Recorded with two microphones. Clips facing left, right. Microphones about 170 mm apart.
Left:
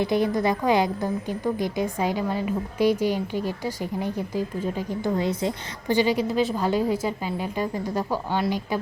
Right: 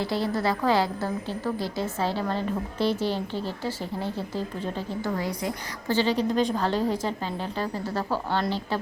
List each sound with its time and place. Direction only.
0.0 s a woman's voice: 20° left (ahead or behind)
6.0 s a woman's voice: 10° left (ahead or behind)